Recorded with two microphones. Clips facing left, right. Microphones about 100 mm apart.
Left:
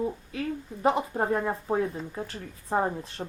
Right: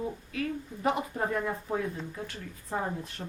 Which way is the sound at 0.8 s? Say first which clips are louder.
Left 4 dB; 30° left (ahead or behind).